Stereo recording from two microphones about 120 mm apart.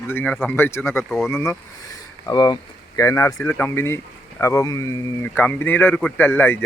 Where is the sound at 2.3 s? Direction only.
35° left (ahead or behind).